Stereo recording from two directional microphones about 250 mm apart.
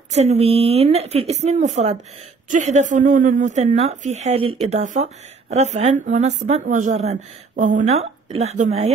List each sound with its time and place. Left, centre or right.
0.1 s speech: right